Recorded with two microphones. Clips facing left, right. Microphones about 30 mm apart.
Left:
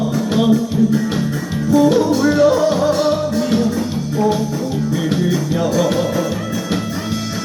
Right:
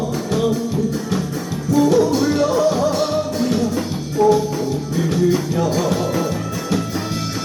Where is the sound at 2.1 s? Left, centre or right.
Centre.